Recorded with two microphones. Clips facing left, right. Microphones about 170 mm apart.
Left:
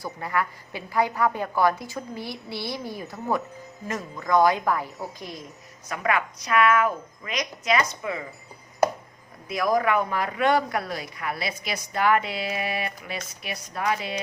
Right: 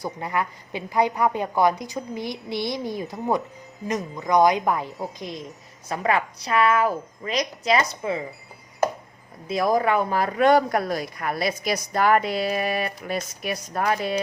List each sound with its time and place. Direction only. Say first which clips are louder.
0.0 s a woman's voice: right 1 dB; 20° right (ahead or behind)
9.5 s speech: right 2 dB; 30° right (ahead or behind); by 14.2 s 45° right (ahead or behind)